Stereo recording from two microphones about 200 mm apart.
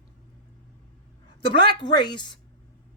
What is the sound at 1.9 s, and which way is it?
Speech, 20° left (ahead or behind).